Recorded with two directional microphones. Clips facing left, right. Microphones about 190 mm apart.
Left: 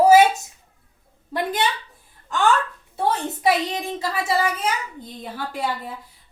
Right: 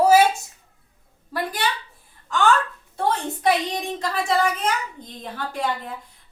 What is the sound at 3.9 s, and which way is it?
A woman's voice, 5° left (ahead or behind).